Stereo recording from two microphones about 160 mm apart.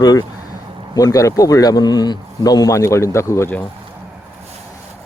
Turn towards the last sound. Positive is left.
turn(degrees=15)  # may be behind; listen again after turning